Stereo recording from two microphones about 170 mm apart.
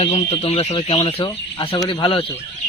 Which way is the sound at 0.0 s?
35° left (ahead or behind).